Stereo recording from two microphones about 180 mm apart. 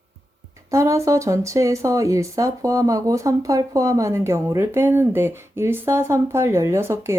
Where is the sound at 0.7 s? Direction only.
15° right (ahead or behind).